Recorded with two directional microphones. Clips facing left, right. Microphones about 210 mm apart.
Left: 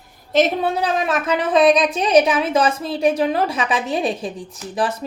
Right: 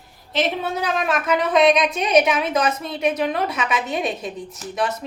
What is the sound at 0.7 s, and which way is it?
A woman's voice, 30° left (ahead or behind).